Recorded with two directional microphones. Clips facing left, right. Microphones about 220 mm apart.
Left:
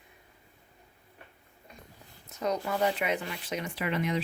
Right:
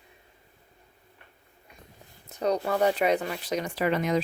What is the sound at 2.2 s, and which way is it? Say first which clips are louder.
Speech: right 4 dB; 35° right (ahead or behind).